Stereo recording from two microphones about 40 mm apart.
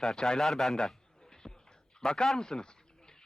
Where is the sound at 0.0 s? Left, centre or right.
Centre.